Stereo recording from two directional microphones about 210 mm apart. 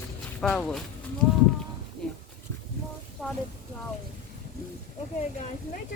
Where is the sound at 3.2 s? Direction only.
5° left (ahead or behind).